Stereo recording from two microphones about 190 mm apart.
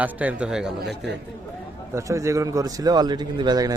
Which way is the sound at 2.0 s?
15° right (ahead or behind).